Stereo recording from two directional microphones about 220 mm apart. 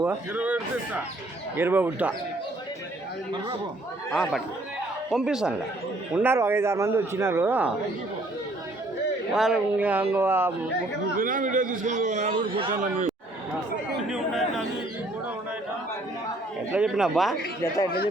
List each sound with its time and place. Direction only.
0.0 s a man's voice: 10° right (ahead or behind)
4.1 s a man's voice: centre (ahead or behind)
9.3 s a man's voice: centre (ahead or behind)
11.2 s a man's voice: 40° right (ahead or behind)
12.7 s a man's voice: 35° right (ahead or behind)
14.1 s chatter: centre (ahead or behind)
16.7 s speech: centre (ahead or behind)